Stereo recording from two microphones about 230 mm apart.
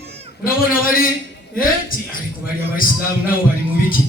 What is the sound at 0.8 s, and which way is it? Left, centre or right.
Speech, left.